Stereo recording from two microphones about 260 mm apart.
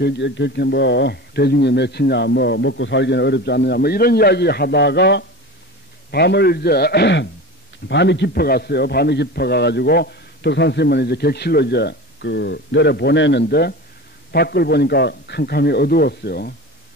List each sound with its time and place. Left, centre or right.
0.0 s a man's voice: left